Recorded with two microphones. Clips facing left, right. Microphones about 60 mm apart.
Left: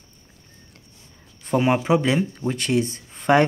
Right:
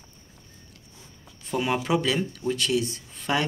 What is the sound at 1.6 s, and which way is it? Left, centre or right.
Speech, left.